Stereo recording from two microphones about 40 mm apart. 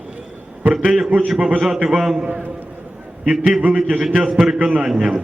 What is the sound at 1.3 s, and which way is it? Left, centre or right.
Speech, right.